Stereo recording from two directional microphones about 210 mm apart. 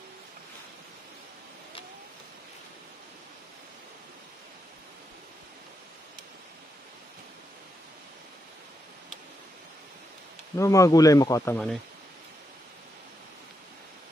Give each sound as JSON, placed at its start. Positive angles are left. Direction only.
{"t": 10.5, "sound": "speech", "side_deg": 15}